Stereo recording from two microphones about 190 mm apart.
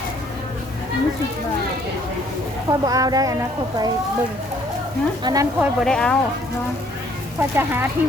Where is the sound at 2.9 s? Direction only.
20° right (ahead or behind).